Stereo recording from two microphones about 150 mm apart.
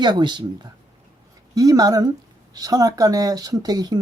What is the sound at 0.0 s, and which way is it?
Speech, 30° right (ahead or behind).